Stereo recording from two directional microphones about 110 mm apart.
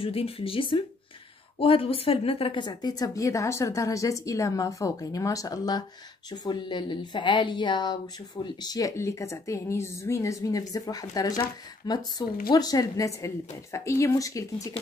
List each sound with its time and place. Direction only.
0.0 s a woman's voice: 60° left (ahead or behind); by 14.7 s 30° left (ahead or behind)